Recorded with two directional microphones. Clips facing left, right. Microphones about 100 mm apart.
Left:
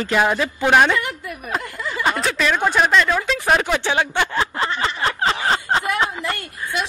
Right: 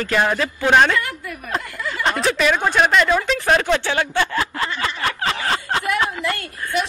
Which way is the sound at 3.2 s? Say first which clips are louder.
Right 1 dB; 10° left (ahead or behind).